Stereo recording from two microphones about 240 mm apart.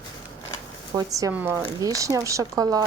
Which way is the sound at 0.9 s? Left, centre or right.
Centre.